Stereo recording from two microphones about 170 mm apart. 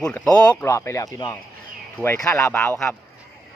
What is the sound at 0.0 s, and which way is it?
Speech, 5° left (ahead or behind).